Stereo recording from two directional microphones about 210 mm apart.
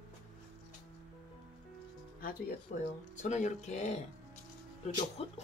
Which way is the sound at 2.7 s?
35° left (ahead or behind).